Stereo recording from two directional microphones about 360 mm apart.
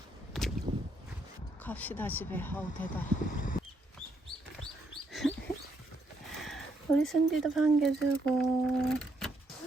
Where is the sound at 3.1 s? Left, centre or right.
Left.